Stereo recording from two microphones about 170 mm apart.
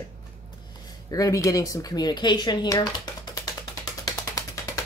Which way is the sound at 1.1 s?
20° left (ahead or behind).